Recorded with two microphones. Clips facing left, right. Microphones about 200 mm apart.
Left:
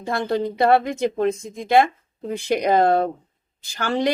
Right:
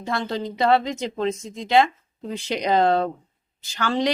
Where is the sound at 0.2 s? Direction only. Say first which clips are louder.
Left 6 dB; 55° left (ahead or behind).